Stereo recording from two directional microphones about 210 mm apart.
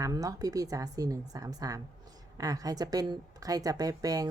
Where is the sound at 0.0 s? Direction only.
15° right (ahead or behind).